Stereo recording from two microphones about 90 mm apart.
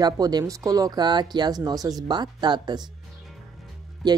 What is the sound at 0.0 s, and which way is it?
Speech, 45° right (ahead or behind).